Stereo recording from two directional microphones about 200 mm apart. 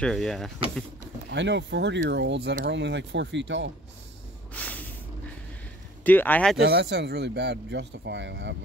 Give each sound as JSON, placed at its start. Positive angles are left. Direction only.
{"t": 0.0, "sound": "speech", "side_deg": 0}
{"t": 1.3, "sound": "speech", "side_deg": -60}
{"t": 4.6, "sound": "spray", "side_deg": 10}
{"t": 6.0, "sound": "speech", "side_deg": 10}
{"t": 6.6, "sound": "speech", "side_deg": -55}